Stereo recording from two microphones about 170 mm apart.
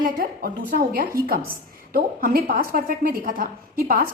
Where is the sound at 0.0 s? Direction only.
55° right (ahead or behind).